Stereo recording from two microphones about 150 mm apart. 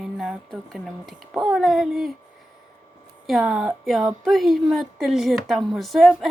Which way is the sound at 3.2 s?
Centre (ahead or behind).